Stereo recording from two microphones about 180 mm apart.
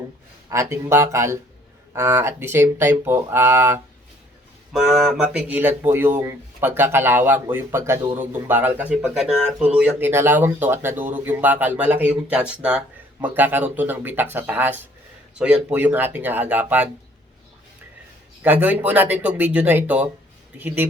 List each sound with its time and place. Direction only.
0.5 s speech: 15° right (ahead or behind)
4.7 s speech: centre (ahead or behind)
18.4 s speech: 10° right (ahead or behind)